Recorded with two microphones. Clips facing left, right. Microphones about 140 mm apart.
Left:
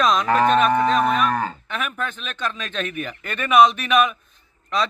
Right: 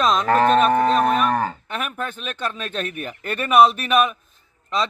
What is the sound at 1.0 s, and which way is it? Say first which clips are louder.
Cattle: right 1 dB; 45° right (ahead or behind).